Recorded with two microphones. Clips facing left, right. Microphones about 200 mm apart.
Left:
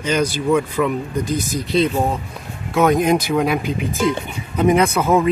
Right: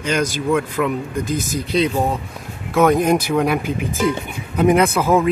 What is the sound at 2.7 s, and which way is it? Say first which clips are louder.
Speech: right 1 dB; centre (ahead or behind).